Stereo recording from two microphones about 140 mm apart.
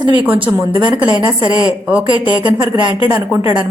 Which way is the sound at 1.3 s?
35° right (ahead or behind).